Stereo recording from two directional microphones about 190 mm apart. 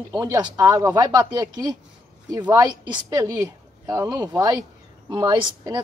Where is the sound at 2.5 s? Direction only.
20° right (ahead or behind).